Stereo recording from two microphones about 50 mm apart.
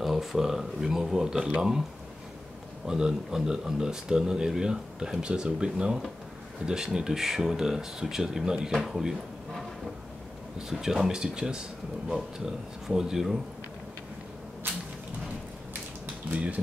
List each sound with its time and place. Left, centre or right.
0.0 s speech: centre
2.9 s speech: centre
10.7 s speech: centre
16.3 s speech: right